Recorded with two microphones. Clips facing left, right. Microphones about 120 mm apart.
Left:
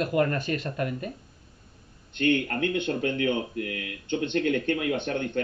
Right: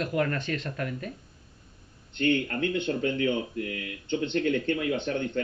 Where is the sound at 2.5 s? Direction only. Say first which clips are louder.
Left 1 dB; 50° left (ahead or behind).